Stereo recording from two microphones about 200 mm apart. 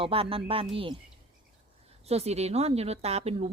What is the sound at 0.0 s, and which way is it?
Speech, 25° right (ahead or behind).